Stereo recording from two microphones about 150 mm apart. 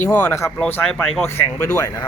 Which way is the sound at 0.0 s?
10° left (ahead or behind).